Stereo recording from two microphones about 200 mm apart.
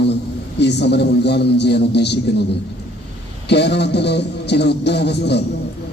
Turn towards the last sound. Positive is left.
turn(degrees=55)  # may be behind; listen again after turning